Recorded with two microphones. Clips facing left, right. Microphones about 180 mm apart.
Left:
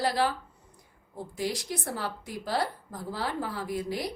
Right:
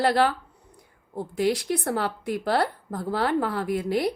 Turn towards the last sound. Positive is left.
turn(degrees=-60)  # may be behind; listen again after turning